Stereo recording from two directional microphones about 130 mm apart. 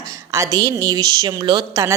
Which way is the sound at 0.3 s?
25° right (ahead or behind).